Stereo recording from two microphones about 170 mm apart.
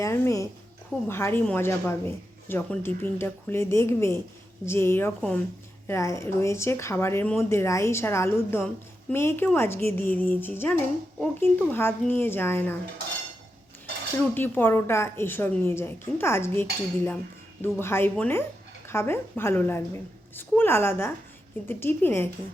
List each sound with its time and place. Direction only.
0.0 s speech: 15° left (ahead or behind)
14.3 s a woman's voice: 10° left (ahead or behind)